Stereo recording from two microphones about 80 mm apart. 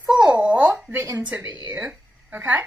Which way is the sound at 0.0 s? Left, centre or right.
Centre.